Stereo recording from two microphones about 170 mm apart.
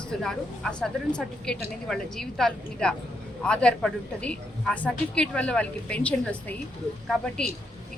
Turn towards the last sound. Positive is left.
turn(degrees=5)  # may be behind; listen again after turning